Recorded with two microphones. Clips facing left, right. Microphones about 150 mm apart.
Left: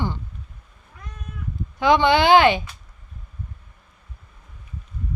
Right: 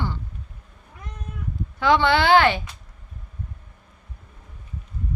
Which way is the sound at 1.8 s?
15° left (ahead or behind).